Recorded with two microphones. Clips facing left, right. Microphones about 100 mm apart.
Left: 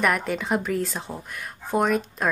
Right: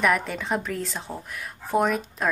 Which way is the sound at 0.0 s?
Centre (ahead or behind).